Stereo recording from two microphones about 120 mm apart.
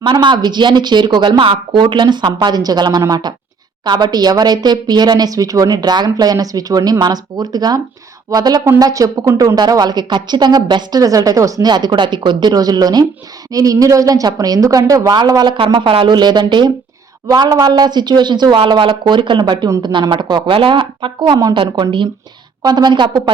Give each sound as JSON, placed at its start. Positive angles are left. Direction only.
{"t": 0.0, "sound": "a woman's voice", "side_deg": -40}